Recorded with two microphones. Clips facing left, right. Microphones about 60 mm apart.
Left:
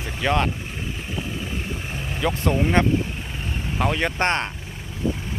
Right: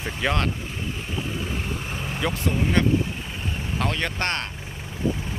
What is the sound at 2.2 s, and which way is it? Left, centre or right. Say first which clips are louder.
Speech: left 3 dB; centre.